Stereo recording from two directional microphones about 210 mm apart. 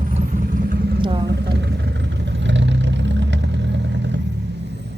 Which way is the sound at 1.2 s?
50° right (ahead or behind).